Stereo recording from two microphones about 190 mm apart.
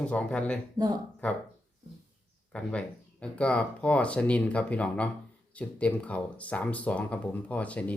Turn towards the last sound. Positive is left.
turn(degrees=5)  # may be behind; listen again after turning